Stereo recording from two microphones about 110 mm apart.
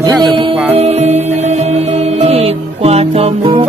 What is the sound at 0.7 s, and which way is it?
Music, 80° right.